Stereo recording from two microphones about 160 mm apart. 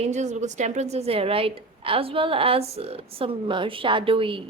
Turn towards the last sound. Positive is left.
turn(degrees=-35)  # may be behind; listen again after turning